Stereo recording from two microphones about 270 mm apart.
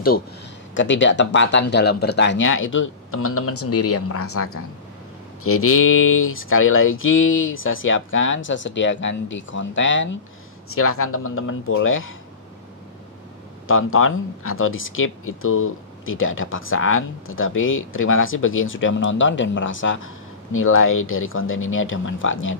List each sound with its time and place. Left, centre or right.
0.7 s speech: left
13.7 s speech: left